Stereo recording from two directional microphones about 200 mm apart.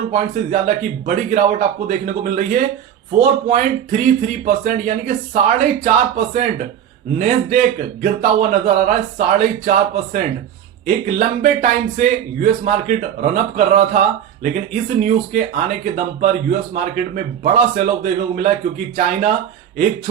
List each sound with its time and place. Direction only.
0.1 s speech: 40° right (ahead or behind)